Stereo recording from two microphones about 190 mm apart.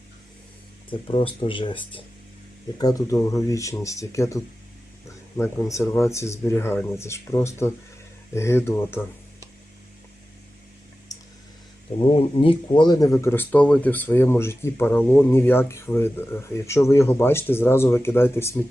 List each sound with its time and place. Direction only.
0.9 s speech: 30° left (ahead or behind); by 9.0 s 10° left (ahead or behind)
11.9 s speech: 30° left (ahead or behind); by 18.6 s 10° left (ahead or behind)